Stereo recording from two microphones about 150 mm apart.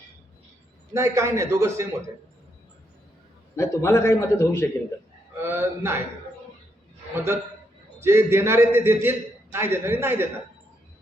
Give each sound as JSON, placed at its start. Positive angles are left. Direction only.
{"t": 0.9, "sound": "a man's voice", "side_deg": -20}
{"t": 3.5, "sound": "a man's voice", "side_deg": 20}
{"t": 5.4, "sound": "a man's voice", "side_deg": -15}
{"t": 7.9, "sound": "a man's voice", "side_deg": -15}